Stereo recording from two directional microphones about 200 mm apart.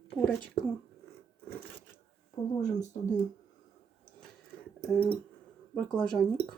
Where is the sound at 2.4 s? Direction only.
25° left (ahead or behind).